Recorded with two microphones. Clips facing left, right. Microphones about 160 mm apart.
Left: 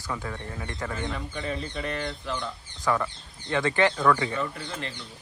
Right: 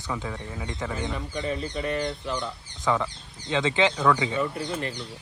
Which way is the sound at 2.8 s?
15° right (ahead or behind).